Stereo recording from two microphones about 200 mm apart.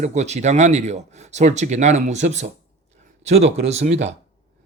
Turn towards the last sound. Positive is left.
turn(degrees=-30)  # may be behind; listen again after turning